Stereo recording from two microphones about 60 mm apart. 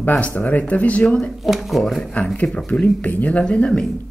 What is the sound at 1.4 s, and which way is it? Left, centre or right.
Speech, centre.